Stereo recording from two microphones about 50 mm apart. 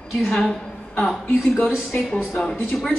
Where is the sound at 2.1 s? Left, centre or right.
Centre.